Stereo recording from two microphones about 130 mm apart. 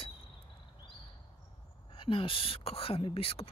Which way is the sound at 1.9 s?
40° left (ahead or behind).